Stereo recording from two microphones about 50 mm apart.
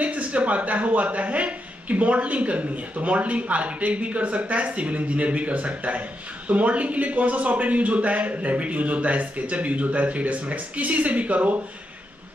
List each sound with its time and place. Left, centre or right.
0.0 s a woman's voice: right